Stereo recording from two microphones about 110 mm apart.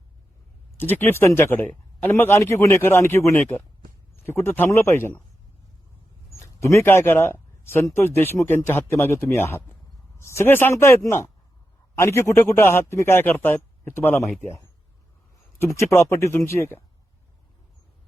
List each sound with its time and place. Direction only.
0.8 s speech: 20° left (ahead or behind)
6.3 s speech: 25° left (ahead or behind)
15.6 s speech: 25° left (ahead or behind)